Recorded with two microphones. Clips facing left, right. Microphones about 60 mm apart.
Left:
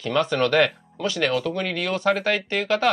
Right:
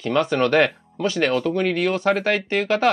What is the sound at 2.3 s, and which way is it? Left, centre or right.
Speech, centre.